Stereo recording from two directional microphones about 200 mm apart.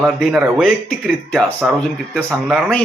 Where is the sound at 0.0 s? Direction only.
Centre (ahead or behind).